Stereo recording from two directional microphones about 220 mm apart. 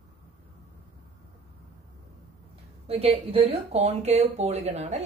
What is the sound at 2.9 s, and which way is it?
Speech, 25° right (ahead or behind).